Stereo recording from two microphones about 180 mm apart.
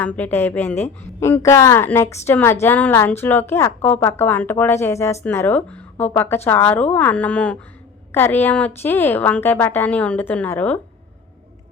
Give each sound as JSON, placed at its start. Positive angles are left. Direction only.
{"t": 0.0, "sound": "a woman's voice", "side_deg": 10}